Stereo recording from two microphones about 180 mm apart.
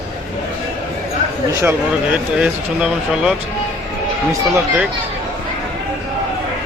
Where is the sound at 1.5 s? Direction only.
15° right (ahead or behind).